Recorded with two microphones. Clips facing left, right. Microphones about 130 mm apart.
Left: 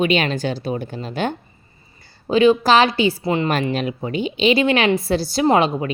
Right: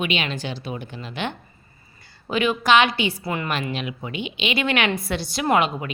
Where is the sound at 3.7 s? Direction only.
40° left (ahead or behind).